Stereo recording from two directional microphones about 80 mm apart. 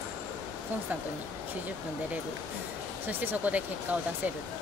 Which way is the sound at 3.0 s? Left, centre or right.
Right.